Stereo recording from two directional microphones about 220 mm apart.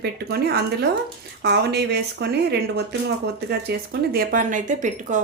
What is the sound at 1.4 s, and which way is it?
Speech, 50° right (ahead or behind).